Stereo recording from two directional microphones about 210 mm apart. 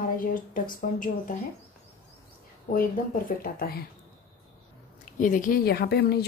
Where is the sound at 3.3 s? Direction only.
45° left (ahead or behind).